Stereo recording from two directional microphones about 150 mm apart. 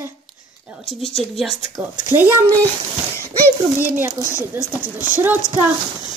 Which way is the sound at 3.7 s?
15° right (ahead or behind).